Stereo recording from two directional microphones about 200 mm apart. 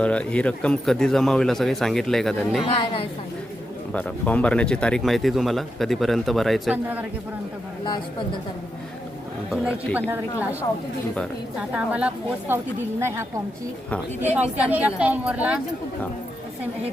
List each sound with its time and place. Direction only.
0.0 s speech: 5° left (ahead or behind)
2.6 s a woman's voice: 25° left (ahead or behind)
3.9 s speech: 5° left (ahead or behind)
9.5 s speech: 5° right (ahead or behind)
11.7 s a woman's voice: 5° right (ahead or behind)
13.9 s speech: 10° left (ahead or behind)
14.3 s a woman's voice: 5° right (ahead or behind)